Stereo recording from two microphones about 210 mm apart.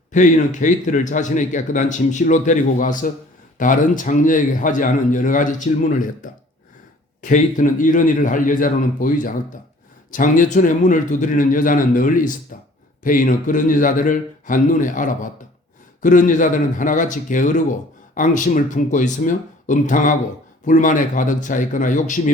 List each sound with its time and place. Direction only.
0.1 s a man's voice: 35° left (ahead or behind)